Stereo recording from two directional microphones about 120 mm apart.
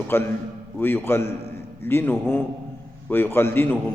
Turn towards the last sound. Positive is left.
turn(degrees=15)  # may be behind; listen again after turning